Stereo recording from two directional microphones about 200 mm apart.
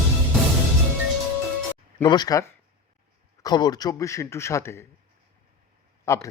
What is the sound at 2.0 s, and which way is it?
A man's voice, 20° left (ahead or behind).